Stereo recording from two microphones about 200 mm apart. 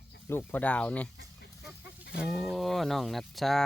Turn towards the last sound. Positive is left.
turn(degrees=0)  # may be behind; listen again after turning